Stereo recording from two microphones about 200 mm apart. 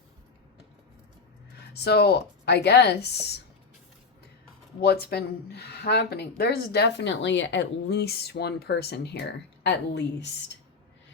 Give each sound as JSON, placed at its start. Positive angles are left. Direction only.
{"t": 1.5, "sound": "speech", "side_deg": 55}
{"t": 4.8, "sound": "a woman's voice", "side_deg": 50}